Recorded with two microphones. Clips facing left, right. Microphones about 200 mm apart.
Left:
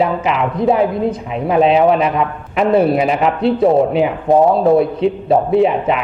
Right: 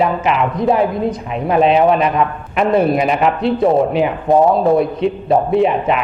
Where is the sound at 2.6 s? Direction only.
30° left (ahead or behind).